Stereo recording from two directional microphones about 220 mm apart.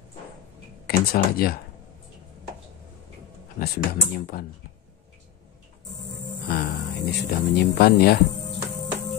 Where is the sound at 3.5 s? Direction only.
45° left (ahead or behind).